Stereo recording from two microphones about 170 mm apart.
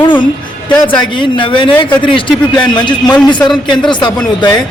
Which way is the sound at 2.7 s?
25° left (ahead or behind).